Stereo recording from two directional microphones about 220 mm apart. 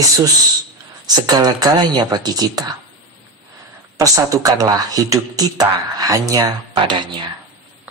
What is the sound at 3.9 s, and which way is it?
Speech, 15° right (ahead or behind).